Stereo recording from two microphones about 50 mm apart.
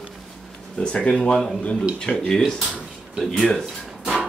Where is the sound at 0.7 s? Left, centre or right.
Left; by 3.6 s centre.